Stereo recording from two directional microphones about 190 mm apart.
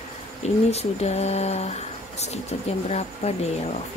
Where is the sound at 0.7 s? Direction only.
35° left (ahead or behind).